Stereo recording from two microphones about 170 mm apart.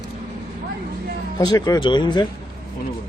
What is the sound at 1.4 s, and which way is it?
Speech, 25° left (ahead or behind).